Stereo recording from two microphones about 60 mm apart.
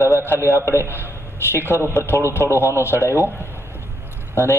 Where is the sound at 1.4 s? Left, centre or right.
Left.